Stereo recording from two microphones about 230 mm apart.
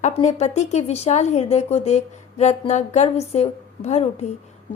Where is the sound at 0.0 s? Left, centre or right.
Left.